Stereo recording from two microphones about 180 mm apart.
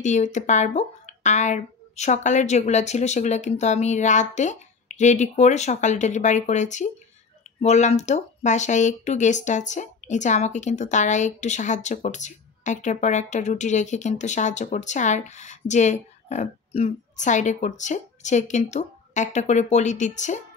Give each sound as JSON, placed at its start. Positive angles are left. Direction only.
{"t": 0.0, "sound": "speech", "side_deg": 40}